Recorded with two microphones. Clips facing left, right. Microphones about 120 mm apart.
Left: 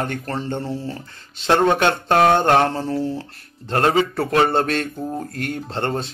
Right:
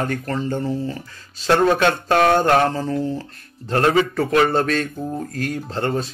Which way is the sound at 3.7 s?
25° left (ahead or behind).